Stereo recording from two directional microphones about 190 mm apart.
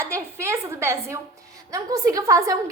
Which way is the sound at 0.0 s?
15° right (ahead or behind).